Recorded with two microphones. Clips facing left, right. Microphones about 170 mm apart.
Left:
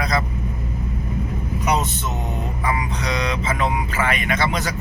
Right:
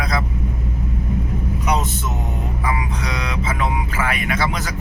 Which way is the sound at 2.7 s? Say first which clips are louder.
Left 1 dB; 5° right (ahead or behind).